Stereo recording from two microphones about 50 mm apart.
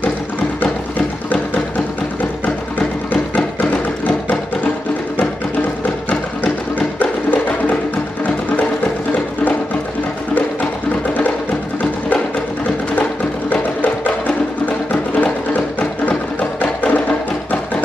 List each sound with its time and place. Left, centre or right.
3.1 s music: left
7.0 s music: left
9.1 s music: left
12.9 s music: left